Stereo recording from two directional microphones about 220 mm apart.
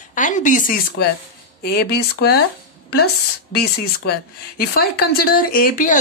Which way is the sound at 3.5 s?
45° left (ahead or behind).